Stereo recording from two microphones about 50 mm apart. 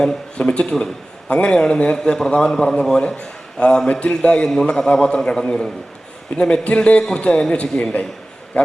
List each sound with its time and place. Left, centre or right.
0.3 s a man's voice: centre